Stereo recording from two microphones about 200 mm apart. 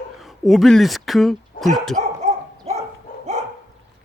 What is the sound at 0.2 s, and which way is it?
Speech, centre (ahead or behind).